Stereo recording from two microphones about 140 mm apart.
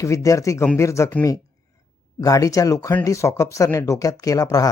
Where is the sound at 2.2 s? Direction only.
25° left (ahead or behind).